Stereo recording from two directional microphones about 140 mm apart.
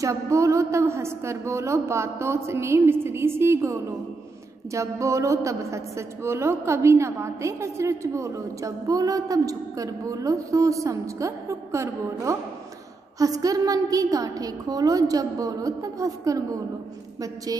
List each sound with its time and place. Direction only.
0.0 s a woman's voice: 20° right (ahead or behind)
17.5 s a woman's voice: 25° right (ahead or behind)